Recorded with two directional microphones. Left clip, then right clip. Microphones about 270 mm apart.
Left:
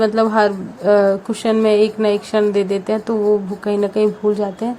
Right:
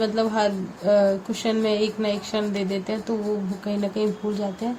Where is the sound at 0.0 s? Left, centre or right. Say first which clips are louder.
Left 8 dB; left.